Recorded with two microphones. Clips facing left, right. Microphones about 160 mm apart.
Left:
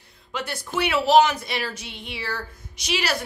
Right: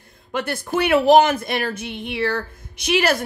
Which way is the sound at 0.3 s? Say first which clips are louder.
Right 6 dB; 55° right (ahead or behind).